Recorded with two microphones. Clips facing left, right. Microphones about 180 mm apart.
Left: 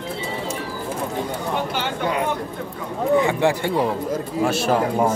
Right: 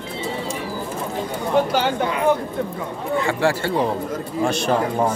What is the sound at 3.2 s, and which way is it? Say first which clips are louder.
Speech: right 2 dB; 15° left (ahead or behind).